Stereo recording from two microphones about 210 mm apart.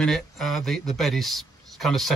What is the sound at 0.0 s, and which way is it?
A man's voice, centre (ahead or behind).